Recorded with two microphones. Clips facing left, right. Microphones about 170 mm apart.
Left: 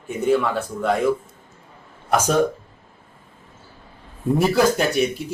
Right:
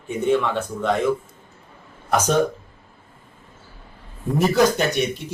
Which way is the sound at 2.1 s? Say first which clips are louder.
Even; 10° left (ahead or behind).